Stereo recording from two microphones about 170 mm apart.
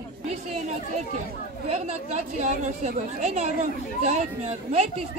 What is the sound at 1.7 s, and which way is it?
A woman's voice, 45° right (ahead or behind).